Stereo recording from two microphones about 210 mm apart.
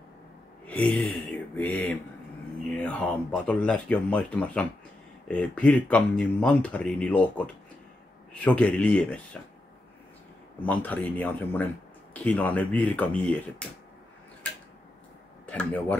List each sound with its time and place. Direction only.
0.7 s speech: 5° left (ahead or behind)
10.6 s speech: 5° left (ahead or behind)
15.4 s speech: 5° left (ahead or behind)